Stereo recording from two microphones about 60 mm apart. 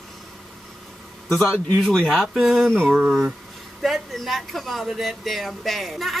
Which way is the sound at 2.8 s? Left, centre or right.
Right.